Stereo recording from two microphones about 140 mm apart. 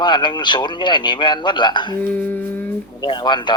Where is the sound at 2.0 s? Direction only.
10° left (ahead or behind).